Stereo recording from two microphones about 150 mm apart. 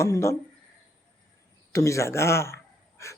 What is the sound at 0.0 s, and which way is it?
Speech, 20° left (ahead or behind).